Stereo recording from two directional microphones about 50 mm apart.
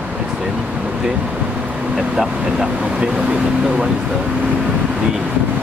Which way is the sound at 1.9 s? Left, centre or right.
Centre.